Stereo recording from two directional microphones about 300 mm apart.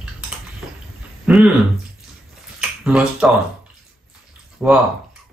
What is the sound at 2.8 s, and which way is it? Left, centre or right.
Finger snapping, centre.